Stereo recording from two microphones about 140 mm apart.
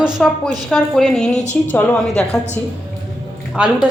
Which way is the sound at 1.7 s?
10° left (ahead or behind).